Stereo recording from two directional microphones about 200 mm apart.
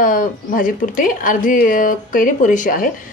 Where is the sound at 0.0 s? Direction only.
40° left (ahead or behind).